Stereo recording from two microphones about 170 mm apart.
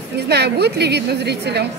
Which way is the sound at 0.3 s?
75° right (ahead or behind).